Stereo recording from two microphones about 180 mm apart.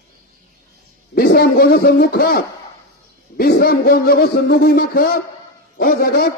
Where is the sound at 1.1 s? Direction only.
55° left (ahead or behind).